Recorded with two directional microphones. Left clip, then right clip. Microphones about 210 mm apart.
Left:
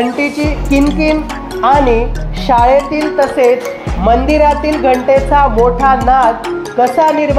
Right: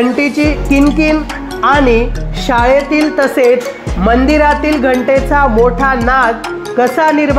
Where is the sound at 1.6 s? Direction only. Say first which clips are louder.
Even; 50° right (ahead or behind).